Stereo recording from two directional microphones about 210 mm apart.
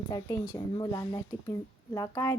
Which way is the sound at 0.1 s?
15° left (ahead or behind).